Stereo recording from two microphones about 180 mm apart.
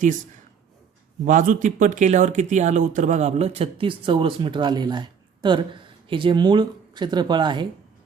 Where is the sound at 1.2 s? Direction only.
45° right (ahead or behind).